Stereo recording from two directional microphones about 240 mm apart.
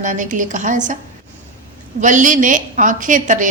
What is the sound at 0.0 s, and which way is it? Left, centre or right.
Speech, right.